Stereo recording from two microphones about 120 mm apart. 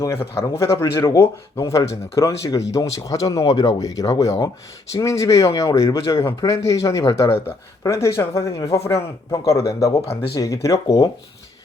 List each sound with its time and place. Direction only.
0.0 s speech: 25° left (ahead or behind)